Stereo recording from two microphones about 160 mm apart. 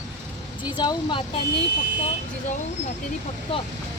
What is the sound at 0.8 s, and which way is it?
Speech, 25° left (ahead or behind).